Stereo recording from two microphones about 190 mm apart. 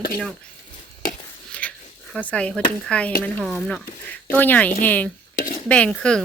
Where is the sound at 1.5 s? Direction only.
5° left (ahead or behind).